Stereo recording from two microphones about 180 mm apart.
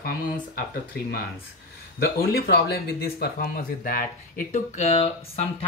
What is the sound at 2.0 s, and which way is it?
Speech, 60° left (ahead or behind).